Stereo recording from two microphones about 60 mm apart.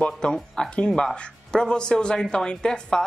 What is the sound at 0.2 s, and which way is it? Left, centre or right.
Speech, centre.